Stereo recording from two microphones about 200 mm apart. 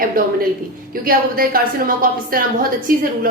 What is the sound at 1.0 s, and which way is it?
A woman's voice, 45° right (ahead or behind).